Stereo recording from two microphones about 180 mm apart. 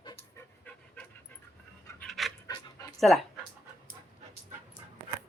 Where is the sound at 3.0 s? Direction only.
Centre (ahead or behind).